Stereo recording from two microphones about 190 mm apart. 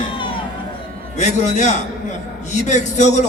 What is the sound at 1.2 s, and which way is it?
A man's voice, 35° left (ahead or behind).